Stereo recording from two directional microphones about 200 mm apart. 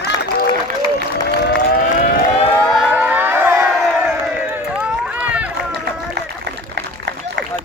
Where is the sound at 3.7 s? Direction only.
Centre (ahead or behind).